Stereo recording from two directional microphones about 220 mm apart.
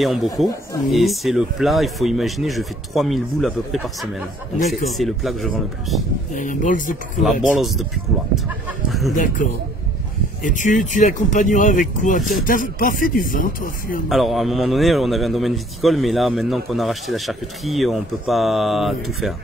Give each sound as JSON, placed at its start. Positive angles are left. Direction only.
{"t": 0.0, "sound": "a man's voice", "side_deg": 0}
{"t": 6.3, "sound": "speech", "side_deg": 35}
{"t": 7.4, "sound": "a man's voice", "side_deg": 0}
{"t": 9.1, "sound": "speech", "side_deg": 35}
{"t": 12.2, "sound": "a man's voice", "side_deg": 0}
{"t": 12.4, "sound": "speech", "side_deg": 40}
{"t": 14.0, "sound": "a man's voice", "side_deg": 0}